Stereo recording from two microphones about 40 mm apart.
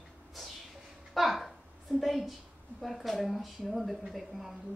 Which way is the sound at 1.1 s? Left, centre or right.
Centre.